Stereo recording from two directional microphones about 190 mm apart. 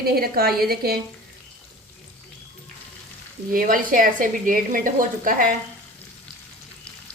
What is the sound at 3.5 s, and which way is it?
A woman's voice, 45° right (ahead or behind).